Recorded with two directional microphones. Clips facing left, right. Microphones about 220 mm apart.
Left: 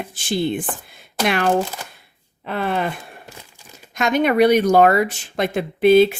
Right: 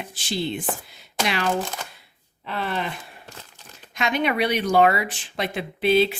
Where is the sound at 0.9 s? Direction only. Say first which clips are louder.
Left 9 dB; 55° left (ahead or behind).